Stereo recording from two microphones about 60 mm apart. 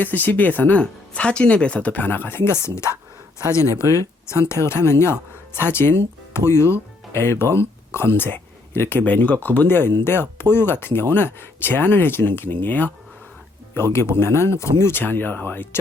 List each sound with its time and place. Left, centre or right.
0.0 s speech: left
4.3 s speech: left
13.7 s speech: left